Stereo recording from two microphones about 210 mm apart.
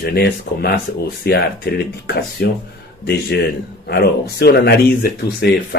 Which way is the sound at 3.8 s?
50° left (ahead or behind).